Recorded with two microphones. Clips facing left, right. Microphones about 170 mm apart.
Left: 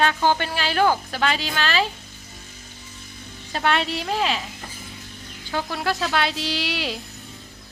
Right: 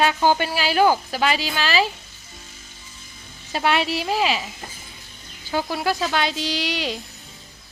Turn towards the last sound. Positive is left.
turn(degrees=0)  # may be behind; listen again after turning